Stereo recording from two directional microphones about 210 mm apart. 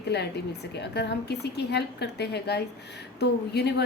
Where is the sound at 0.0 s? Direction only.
50° left (ahead or behind).